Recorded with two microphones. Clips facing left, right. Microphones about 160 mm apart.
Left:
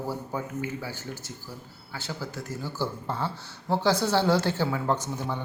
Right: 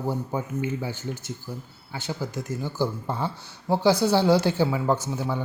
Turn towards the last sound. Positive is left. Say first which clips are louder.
# right 3 dB
turn(degrees=-10)  # may be behind; listen again after turning